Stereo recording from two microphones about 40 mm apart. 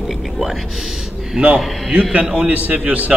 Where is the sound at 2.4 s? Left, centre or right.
Right.